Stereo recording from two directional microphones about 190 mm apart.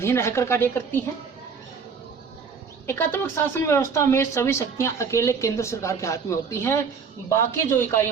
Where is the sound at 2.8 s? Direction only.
10° left (ahead or behind).